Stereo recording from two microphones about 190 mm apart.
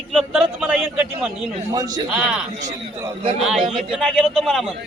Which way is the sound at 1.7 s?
20° right (ahead or behind).